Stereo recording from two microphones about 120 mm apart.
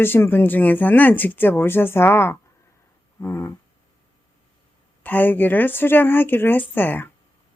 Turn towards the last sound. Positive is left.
turn(degrees=15)  # may be behind; listen again after turning